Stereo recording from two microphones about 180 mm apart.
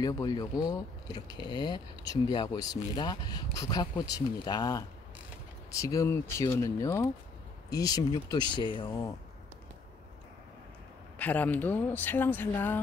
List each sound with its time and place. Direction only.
0.0 s speech: 20° left (ahead or behind)
11.1 s speech: 10° left (ahead or behind)